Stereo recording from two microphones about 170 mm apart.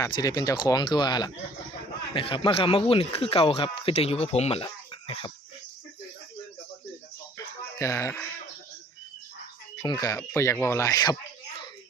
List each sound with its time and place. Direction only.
0.0 s speech: 20° left (ahead or behind)
7.3 s a sound: 15° left (ahead or behind)
9.8 s speech: 20° left (ahead or behind)